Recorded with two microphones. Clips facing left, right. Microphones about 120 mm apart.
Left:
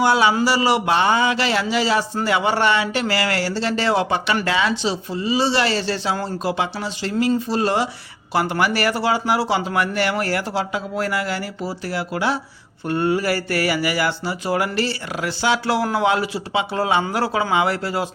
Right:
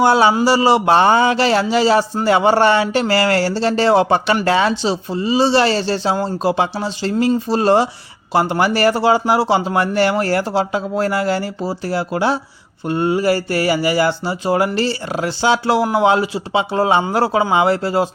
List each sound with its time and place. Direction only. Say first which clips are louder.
0.0 s a man's voice: right 4 dB; 30° right (ahead or behind)